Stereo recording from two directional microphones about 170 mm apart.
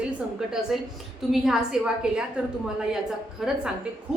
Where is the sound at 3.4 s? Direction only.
Centre (ahead or behind).